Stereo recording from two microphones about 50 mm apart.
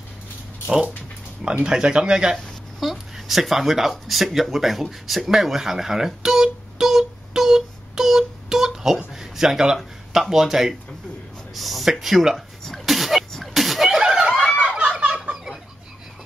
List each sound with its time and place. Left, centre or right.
1.4 s speech: centre
2.8 s speech: centre
5.3 s music: centre
9.1 s a sound: centre
9.8 s speech: centre
12.6 s sneeze: centre
14.6 s a sound: right